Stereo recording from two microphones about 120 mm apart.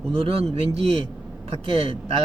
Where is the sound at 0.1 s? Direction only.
55° right (ahead or behind).